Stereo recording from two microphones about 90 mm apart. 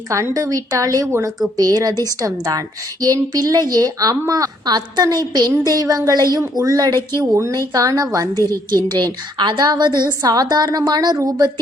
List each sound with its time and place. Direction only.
0.1 s a woman's voice: 35° right (ahead or behind)
8.4 s a woman's voice: 50° right (ahead or behind)